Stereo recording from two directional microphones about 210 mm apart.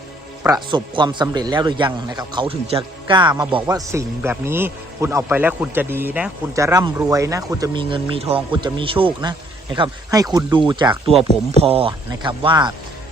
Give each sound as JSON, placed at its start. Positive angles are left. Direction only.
{"t": 0.4, "sound": "a man's voice", "side_deg": -20}